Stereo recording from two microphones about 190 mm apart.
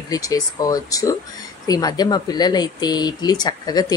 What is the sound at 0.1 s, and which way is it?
A woman's voice, 20° left (ahead or behind).